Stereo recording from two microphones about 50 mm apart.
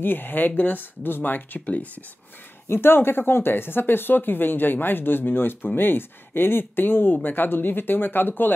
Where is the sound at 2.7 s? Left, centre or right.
Left.